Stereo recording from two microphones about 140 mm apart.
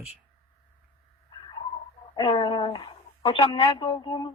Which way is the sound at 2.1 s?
35° left (ahead or behind).